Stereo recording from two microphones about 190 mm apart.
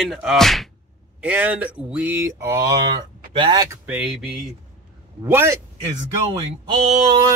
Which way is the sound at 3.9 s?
5° right (ahead or behind).